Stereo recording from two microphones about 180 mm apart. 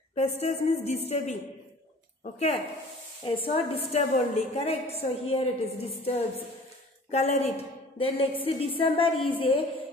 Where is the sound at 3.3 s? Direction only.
30° left (ahead or behind).